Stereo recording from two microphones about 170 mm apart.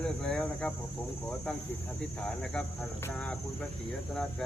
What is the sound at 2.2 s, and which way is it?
Speech, 5° left (ahead or behind).